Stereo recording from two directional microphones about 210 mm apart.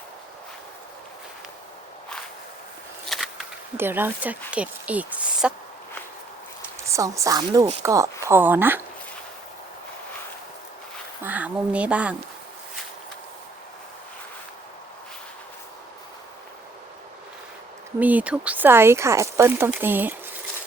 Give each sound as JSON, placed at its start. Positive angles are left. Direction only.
{"t": 3.1, "sound": "a sound", "side_deg": 0}
{"t": 3.8, "sound": "speech", "side_deg": -10}
{"t": 6.9, "sound": "speech", "side_deg": -15}
{"t": 11.2, "sound": "speech", "side_deg": -10}
{"t": 18.0, "sound": "speech", "side_deg": -5}